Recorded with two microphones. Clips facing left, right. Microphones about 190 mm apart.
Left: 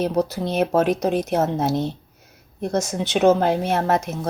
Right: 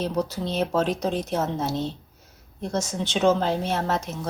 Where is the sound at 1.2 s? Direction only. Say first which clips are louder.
Left 5 dB; 60° left (ahead or behind).